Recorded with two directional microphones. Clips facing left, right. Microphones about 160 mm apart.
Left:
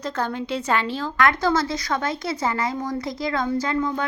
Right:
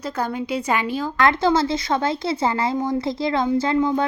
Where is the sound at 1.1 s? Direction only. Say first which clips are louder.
Right 2 dB; 30° right (ahead or behind).